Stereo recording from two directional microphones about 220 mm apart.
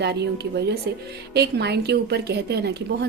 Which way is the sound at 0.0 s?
50° right (ahead or behind).